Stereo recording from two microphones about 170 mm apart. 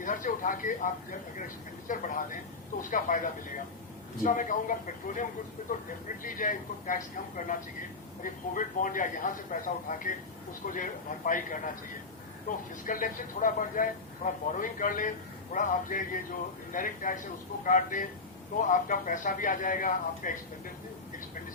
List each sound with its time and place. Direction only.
0.0 s speech: 50° left (ahead or behind)
1.9 s speech: 50° left (ahead or behind)